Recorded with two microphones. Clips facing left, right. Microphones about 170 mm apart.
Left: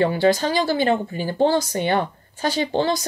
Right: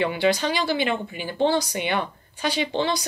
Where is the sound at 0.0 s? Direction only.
45° left (ahead or behind).